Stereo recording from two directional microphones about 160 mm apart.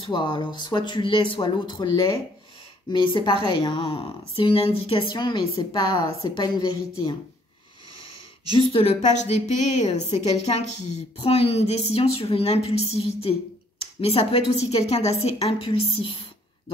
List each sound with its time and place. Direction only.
0.1 s speech: 30° left (ahead or behind)
9.0 s a woman's voice: 45° left (ahead or behind)